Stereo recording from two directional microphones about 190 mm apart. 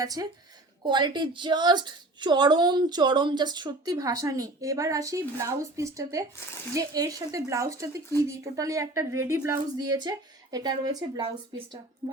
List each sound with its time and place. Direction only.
0.0 s a woman's voice: 20° right (ahead or behind)